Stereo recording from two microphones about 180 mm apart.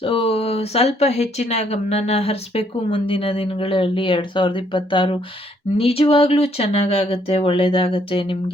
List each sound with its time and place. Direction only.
0.0 s speech: 30° left (ahead or behind)